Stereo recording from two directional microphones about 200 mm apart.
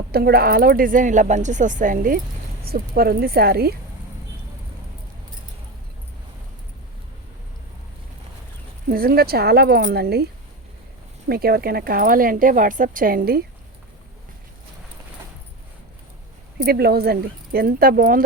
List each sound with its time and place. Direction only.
0.1 s a woman's voice: 50° right (ahead or behind)
8.9 s a woman's voice: 50° right (ahead or behind)
11.3 s a woman's voice: 50° right (ahead or behind)
16.6 s a woman's voice: 50° right (ahead or behind)